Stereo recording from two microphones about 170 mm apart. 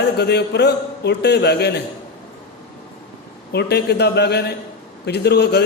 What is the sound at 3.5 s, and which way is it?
A man's voice, 80° left.